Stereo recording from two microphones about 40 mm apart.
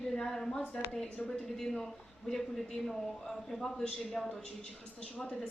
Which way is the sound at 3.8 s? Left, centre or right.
Left.